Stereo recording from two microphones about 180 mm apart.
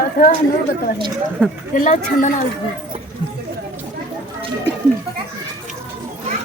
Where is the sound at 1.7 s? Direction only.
45° left (ahead or behind).